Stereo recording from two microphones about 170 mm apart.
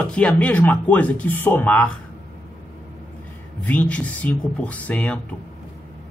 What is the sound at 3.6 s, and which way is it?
Speech, 10° left (ahead or behind).